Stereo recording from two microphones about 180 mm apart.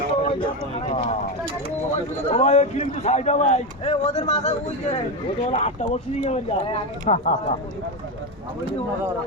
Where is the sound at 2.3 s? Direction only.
40° left (ahead or behind).